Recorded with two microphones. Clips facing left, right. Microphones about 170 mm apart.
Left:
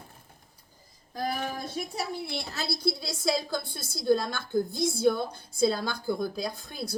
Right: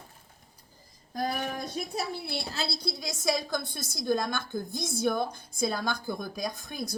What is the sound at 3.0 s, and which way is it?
A woman's voice, 15° right (ahead or behind).